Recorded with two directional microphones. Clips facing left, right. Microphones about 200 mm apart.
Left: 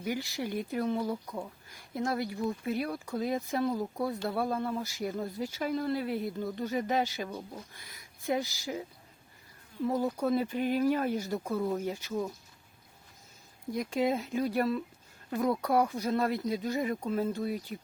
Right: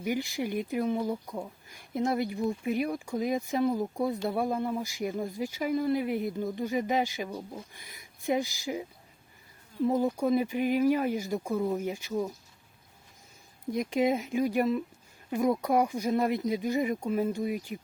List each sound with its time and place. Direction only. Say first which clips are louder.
0.0 s speech: right 3 dB; 15° right (ahead or behind)
13.7 s speech: right 3 dB; 20° right (ahead or behind)